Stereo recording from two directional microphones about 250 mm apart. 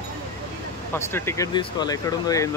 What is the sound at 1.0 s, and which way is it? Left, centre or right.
Speech, centre.